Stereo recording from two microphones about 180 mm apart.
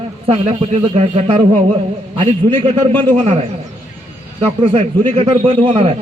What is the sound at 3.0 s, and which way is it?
Speech, 25° right (ahead or behind).